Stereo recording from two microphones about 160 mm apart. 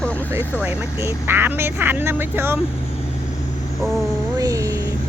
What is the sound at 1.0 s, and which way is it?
Speech, 15° right (ahead or behind).